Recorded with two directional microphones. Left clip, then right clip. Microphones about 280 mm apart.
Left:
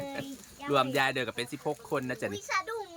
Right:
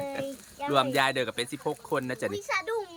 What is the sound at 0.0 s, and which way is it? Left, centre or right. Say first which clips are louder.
Speech: right 5 dB; centre.